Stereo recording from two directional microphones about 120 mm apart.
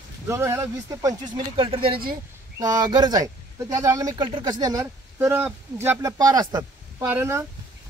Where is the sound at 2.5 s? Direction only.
30° right (ahead or behind).